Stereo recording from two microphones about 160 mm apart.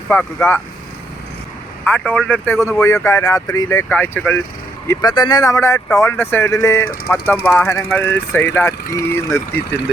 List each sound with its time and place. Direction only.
0.1 s speech: 15° left (ahead or behind)
1.8 s speech: 10° left (ahead or behind)
4.9 s speech: 25° left (ahead or behind)